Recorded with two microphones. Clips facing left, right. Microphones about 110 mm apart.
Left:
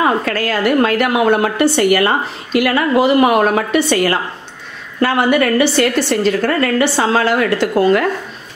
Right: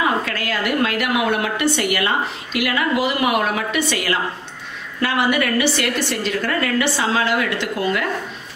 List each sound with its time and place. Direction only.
0.0 s a woman's voice: 40° left (ahead or behind)